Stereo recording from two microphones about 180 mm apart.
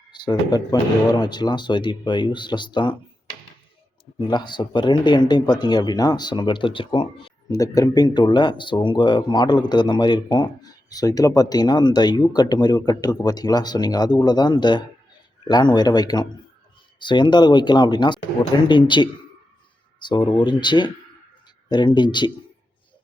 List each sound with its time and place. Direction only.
0.1 s speech: 20° left (ahead or behind)
4.3 s speech: 25° left (ahead or behind)